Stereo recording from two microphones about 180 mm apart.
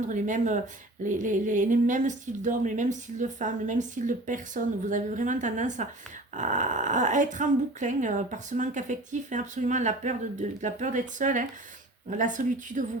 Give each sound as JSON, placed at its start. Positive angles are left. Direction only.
{"t": 0.1, "sound": "speech", "side_deg": -45}